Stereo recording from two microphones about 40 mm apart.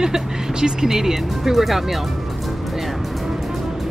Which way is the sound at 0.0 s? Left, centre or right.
Centre.